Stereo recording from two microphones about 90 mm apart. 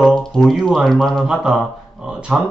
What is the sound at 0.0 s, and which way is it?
Speech, 5° left (ahead or behind).